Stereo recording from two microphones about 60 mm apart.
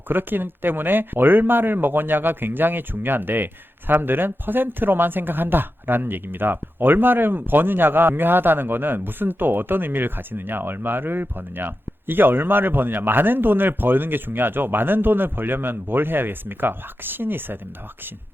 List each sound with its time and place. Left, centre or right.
0.1 s speech: right